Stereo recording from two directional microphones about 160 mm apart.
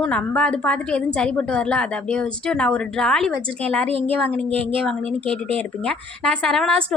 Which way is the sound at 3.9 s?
35° right (ahead or behind).